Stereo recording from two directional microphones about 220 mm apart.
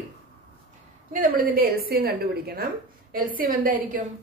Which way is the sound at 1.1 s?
40° right (ahead or behind).